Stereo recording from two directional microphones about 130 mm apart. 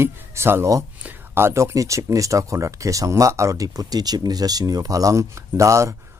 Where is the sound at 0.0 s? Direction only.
20° right (ahead or behind).